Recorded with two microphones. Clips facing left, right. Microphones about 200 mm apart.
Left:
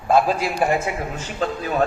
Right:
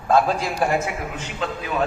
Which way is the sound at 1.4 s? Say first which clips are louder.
Left 4 dB; 40° left (ahead or behind).